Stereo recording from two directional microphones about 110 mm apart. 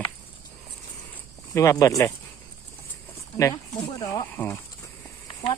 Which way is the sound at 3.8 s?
40° left (ahead or behind).